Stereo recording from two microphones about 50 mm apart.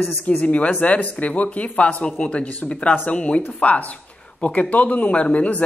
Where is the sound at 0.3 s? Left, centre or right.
Left.